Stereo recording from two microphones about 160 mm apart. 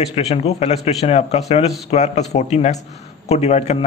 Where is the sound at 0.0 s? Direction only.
40° left (ahead or behind).